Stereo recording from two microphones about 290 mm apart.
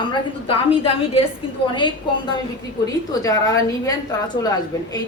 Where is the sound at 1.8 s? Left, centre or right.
Centre.